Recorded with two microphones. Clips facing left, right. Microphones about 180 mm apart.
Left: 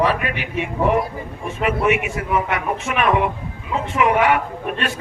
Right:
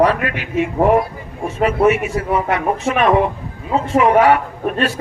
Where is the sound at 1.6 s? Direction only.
40° right (ahead or behind).